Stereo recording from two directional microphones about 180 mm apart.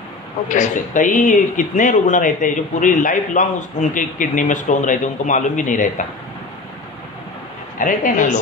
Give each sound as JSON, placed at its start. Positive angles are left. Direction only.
{"t": 0.5, "sound": "speech", "side_deg": 45}
{"t": 7.8, "sound": "speech", "side_deg": 45}